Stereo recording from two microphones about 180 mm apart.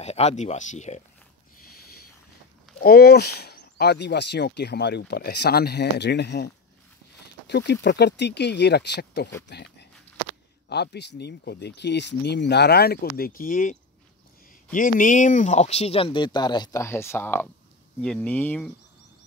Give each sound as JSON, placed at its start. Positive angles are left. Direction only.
{"t": 0.0, "sound": "speech", "side_deg": 35}
{"t": 2.8, "sound": "speech", "side_deg": 60}